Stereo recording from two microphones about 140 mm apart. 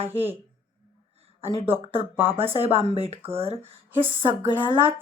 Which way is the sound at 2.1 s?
15° right (ahead or behind).